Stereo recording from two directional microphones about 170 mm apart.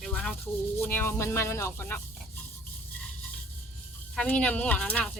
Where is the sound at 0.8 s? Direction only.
10° left (ahead or behind).